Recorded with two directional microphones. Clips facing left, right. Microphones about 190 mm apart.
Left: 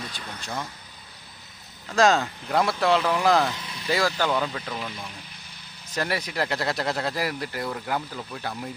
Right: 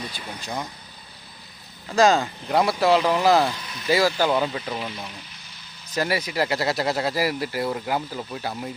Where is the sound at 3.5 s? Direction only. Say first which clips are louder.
Right 1 dB; 25° left (ahead or behind).